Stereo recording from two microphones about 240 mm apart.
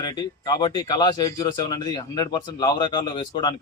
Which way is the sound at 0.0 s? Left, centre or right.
Centre.